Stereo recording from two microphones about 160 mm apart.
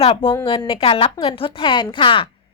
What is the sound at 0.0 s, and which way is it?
A woman's voice, 35° left (ahead or behind).